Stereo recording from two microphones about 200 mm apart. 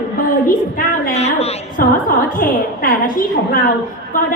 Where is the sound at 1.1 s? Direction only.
30° left (ahead or behind).